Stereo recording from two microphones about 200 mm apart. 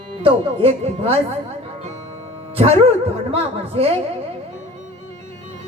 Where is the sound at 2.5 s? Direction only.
30° right (ahead or behind).